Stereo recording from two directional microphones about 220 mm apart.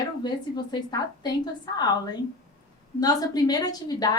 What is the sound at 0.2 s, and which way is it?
A woman's voice, 20° left (ahead or behind).